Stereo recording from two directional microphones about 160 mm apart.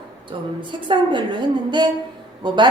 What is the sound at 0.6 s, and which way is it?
A woman's voice, 30° right (ahead or behind).